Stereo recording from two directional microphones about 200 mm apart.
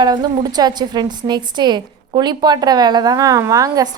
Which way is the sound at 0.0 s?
20° right (ahead or behind).